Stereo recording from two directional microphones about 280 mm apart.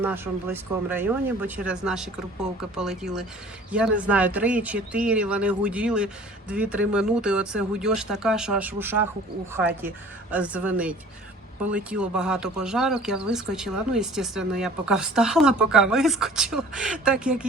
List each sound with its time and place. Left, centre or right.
0.0 s speech: centre